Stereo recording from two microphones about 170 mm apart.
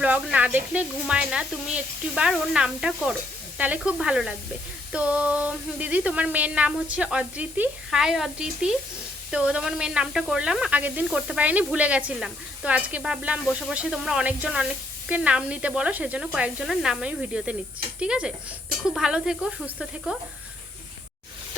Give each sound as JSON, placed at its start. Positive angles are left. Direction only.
{"t": 0.0, "sound": "speech", "side_deg": -5}